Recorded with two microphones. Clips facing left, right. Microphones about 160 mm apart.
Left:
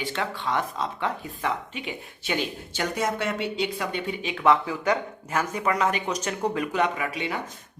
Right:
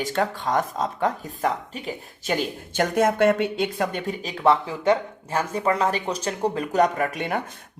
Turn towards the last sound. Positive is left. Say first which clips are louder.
# right 4 dB
turn(degrees=-50)  # may be behind; listen again after turning